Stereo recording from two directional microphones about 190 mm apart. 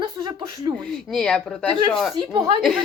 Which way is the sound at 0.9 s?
Centre (ahead or behind).